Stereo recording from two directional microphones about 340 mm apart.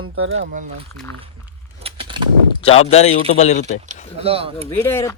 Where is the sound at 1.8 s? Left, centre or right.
Centre.